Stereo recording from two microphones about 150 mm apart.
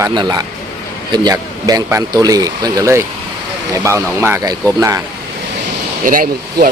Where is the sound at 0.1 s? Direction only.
30° right (ahead or behind).